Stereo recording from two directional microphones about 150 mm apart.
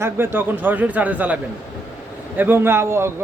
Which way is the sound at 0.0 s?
15° right (ahead or behind).